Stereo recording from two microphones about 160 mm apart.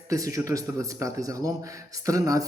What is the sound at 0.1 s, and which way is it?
Speech, 20° right (ahead or behind).